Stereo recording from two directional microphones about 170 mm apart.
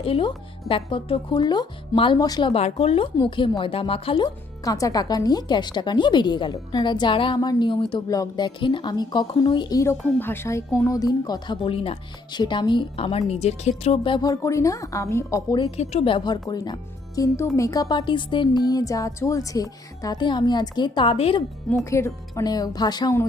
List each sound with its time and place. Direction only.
0.0 s a woman's voice: 30° left (ahead or behind)
4.6 s a woman's voice: 20° left (ahead or behind)
15.6 s a woman's voice: 40° left (ahead or behind)
21.8 s a woman's voice: 15° left (ahead or behind)